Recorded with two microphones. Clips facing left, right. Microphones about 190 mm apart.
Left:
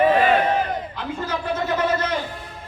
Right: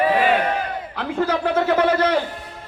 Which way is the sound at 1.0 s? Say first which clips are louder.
Right 6 dB; 65° right (ahead or behind).